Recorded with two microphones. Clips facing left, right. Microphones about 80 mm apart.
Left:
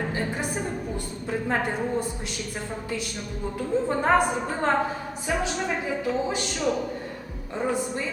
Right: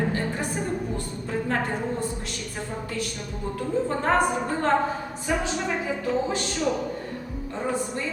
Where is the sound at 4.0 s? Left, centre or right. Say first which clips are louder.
Left 1 dB; centre.